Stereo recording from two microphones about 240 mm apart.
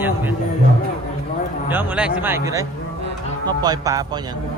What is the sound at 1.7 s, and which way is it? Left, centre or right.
Speech, centre.